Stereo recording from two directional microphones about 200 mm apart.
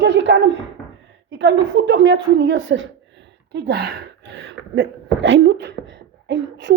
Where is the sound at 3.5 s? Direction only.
55° right (ahead or behind).